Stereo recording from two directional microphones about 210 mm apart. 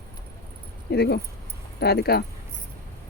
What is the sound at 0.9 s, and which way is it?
Speech, 50° left (ahead or behind).